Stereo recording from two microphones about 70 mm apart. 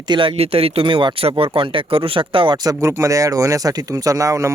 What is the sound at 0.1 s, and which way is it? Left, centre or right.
Speech, right.